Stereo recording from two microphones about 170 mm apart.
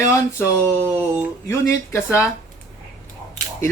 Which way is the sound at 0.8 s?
10° right (ahead or behind).